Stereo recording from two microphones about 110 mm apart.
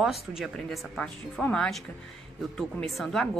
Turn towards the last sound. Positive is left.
turn(degrees=5)  # may be behind; listen again after turning